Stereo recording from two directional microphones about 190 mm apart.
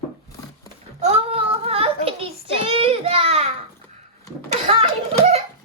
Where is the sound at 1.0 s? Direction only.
30° right (ahead or behind).